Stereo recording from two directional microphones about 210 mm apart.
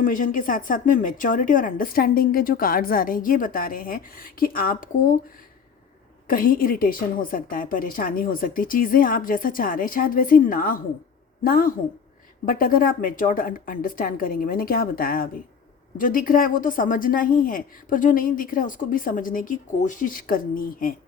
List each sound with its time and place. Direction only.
0.0 s a woman's voice: 40° left (ahead or behind)
6.2 s a woman's voice: 40° left (ahead or behind)